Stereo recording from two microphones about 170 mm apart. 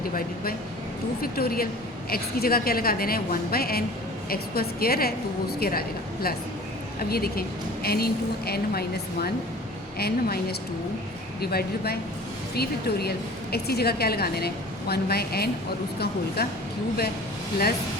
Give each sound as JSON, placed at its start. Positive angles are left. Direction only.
{"t": 1.2, "sound": "a woman's voice", "side_deg": 60}
{"t": 7.1, "sound": "a woman's voice", "side_deg": 65}
{"t": 10.0, "sound": "a woman's voice", "side_deg": 65}